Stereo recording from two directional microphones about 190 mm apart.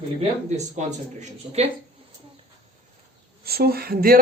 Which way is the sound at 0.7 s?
40° right (ahead or behind).